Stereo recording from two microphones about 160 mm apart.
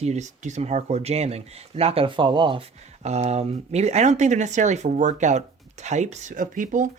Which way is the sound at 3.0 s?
45° right (ahead or behind).